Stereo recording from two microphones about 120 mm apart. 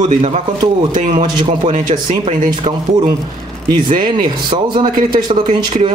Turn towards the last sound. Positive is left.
turn(degrees=-40)  # may be behind; listen again after turning